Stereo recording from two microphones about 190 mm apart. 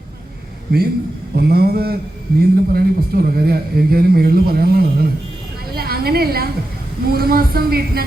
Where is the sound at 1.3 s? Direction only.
55° right (ahead or behind).